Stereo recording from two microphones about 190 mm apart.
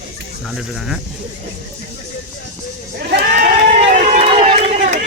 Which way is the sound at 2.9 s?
60° right (ahead or behind).